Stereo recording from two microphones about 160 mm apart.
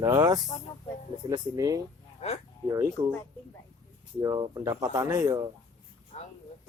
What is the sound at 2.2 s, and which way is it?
Speech, 40° left (ahead or behind).